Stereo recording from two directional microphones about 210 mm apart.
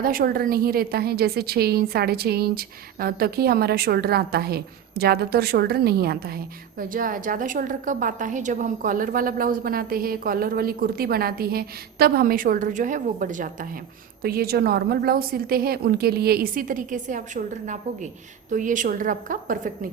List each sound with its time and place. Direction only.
0.0 s a woman's voice: 45° right (ahead or behind)